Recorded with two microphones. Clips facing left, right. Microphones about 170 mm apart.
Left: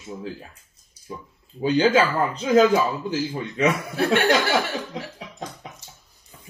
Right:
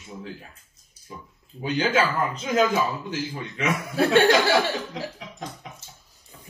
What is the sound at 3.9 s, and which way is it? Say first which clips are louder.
Chuckle: right 6 dB; 30° right (ahead or behind).